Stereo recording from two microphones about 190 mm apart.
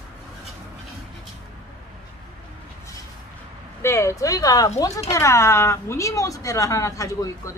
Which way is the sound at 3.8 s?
15° left (ahead or behind).